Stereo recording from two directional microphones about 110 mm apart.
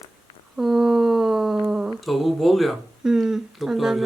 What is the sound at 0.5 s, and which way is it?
Humming, 5° right (ahead or behind).